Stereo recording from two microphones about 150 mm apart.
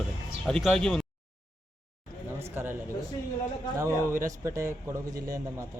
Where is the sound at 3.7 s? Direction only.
20° right (ahead or behind).